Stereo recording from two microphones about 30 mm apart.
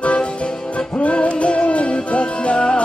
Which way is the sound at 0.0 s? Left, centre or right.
Left.